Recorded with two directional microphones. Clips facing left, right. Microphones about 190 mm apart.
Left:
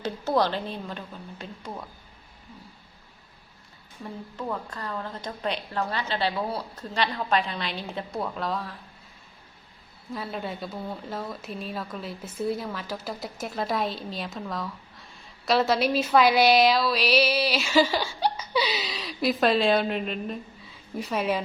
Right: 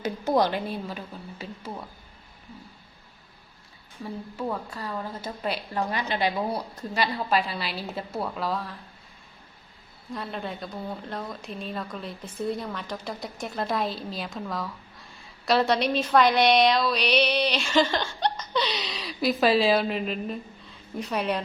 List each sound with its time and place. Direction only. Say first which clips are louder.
0.0 s a woman's voice: right 1 dB; 15° right (ahead or behind)
4.0 s a woman's voice: right 2 dB; 10° right (ahead or behind)
10.1 s speech: left 1 dB; 5° left (ahead or behind)